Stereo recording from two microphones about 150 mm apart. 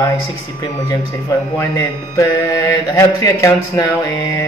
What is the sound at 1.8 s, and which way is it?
Mantra, 20° left (ahead or behind).